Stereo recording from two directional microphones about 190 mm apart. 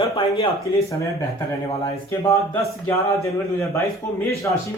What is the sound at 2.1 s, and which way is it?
Speech, 15° left (ahead or behind).